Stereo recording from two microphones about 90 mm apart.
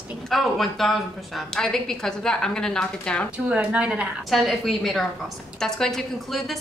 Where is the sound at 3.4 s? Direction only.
15° right (ahead or behind).